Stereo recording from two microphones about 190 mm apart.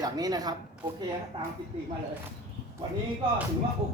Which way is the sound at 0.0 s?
20° right (ahead or behind).